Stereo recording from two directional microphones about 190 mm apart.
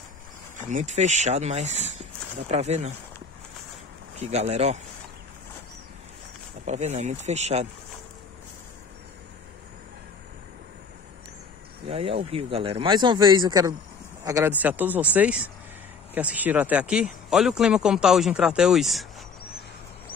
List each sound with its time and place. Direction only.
0.6 s speech: 40° right (ahead or behind)
4.2 s speech: 35° right (ahead or behind)
6.6 s speech: 35° right (ahead or behind)
11.9 s speech: 30° right (ahead or behind); by 19.0 s centre (ahead or behind)